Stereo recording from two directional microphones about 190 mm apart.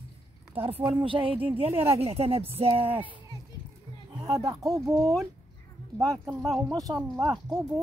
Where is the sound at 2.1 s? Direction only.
30° right (ahead or behind).